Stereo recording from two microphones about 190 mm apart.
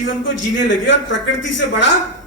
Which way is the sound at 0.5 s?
70° left (ahead or behind).